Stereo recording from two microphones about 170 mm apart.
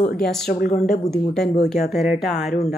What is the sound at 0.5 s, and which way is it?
Speech, 60° left (ahead or behind).